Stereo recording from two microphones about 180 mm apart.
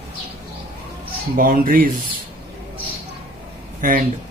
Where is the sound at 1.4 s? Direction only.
50° right (ahead or behind).